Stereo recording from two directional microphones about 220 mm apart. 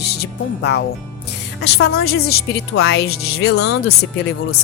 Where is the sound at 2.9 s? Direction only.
45° left (ahead or behind).